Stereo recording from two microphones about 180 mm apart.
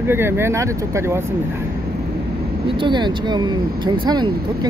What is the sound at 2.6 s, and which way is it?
Speech, 25° right (ahead or behind).